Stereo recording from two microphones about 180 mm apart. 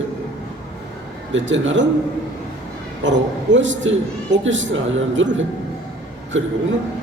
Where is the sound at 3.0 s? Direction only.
90° right.